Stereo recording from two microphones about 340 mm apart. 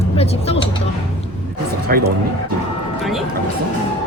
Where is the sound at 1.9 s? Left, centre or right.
Right.